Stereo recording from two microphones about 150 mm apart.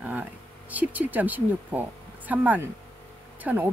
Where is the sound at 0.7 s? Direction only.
10° right (ahead or behind).